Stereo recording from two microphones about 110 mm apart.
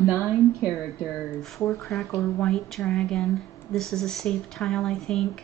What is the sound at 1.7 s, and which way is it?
A woman's voice, centre (ahead or behind).